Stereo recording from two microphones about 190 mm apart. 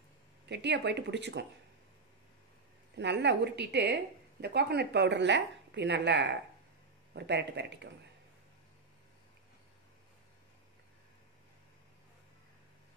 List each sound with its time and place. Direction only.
0.5 s a woman's voice: 65° right (ahead or behind)
3.0 s a woman's voice: 65° right (ahead or behind)